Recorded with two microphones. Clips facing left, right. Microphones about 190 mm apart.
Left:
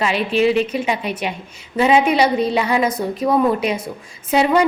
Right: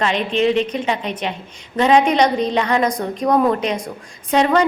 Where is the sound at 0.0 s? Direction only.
5° left (ahead or behind).